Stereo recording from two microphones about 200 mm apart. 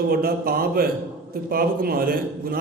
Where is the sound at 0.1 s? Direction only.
50° right (ahead or behind).